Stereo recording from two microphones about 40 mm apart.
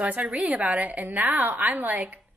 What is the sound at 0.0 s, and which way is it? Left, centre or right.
A woman's voice, right.